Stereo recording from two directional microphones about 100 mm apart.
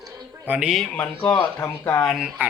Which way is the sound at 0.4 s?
15° right (ahead or behind).